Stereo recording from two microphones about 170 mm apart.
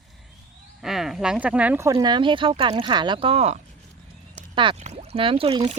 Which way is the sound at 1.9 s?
30° right (ahead or behind).